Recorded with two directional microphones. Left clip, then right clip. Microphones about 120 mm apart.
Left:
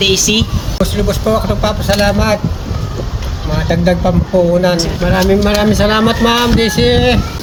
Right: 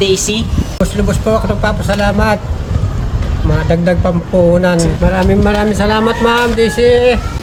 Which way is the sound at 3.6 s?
20° right (ahead or behind).